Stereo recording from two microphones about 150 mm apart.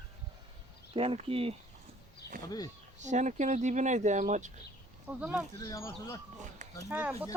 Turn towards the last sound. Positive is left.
turn(degrees=-10)  # may be behind; listen again after turning